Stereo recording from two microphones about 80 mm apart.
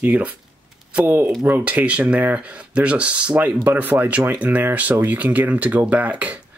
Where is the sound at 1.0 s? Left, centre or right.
Right.